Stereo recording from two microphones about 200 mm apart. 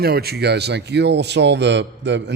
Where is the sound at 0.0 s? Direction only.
50° right (ahead or behind).